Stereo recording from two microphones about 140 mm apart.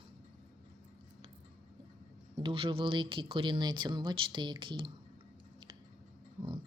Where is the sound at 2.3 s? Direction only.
40° right (ahead or behind).